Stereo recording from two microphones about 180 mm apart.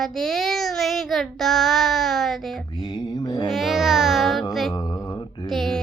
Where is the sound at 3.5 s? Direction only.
Centre (ahead or behind).